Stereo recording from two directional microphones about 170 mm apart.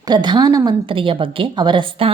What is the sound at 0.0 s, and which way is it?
A woman's voice, 25° right (ahead or behind).